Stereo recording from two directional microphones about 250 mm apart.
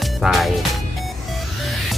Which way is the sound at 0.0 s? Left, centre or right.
Centre.